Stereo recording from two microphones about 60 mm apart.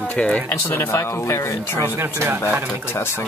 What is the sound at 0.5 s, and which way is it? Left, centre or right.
Speech, left.